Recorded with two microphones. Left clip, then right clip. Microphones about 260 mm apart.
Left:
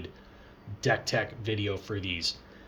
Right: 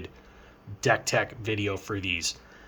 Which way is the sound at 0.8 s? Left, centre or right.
Centre.